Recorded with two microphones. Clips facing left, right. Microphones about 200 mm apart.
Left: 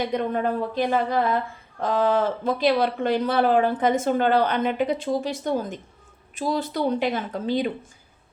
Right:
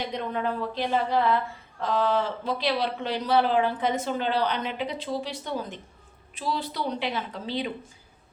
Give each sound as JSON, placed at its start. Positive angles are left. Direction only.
{"t": 0.1, "sound": "a man's voice", "side_deg": 50}